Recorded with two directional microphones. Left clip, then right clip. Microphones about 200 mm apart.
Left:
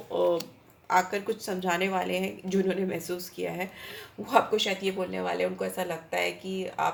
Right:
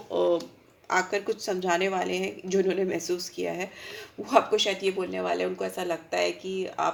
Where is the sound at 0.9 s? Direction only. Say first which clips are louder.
Even; 35° right (ahead or behind).